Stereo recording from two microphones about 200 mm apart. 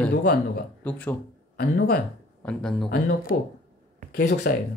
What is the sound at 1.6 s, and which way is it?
Speech, 50° left (ahead or behind).